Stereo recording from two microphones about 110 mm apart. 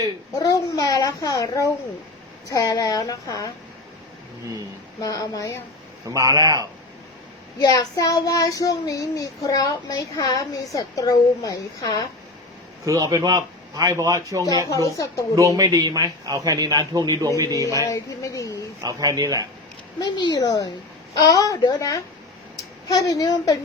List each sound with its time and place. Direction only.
0.3 s a child's voice: 35° left (ahead or behind)
4.9 s speech: 35° left (ahead or behind)
6.1 s a man's voice: 30° right (ahead or behind)
7.6 s speech: 35° left (ahead or behind)
12.8 s speech: 30° right (ahead or behind)
14.7 s speech: 30° left (ahead or behind)
15.4 s a man's voice: 30° right (ahead or behind)
17.8 s speech: 30° left (ahead or behind)
18.8 s a man's voice: 35° right (ahead or behind)
20.0 s speech: 40° left (ahead or behind)